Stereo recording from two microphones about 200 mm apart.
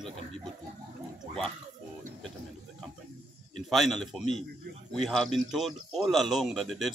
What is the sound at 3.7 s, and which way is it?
Speech, centre (ahead or behind).